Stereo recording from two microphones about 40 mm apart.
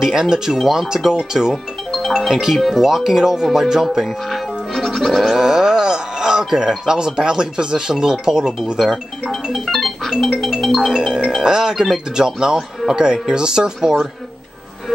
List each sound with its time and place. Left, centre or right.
0.0 s speech: centre
1.5 s music: centre
2.4 s speech: centre
4.0 s music: centre
5.4 s music: centre
6.9 s speech: centre
10.8 s speech: centre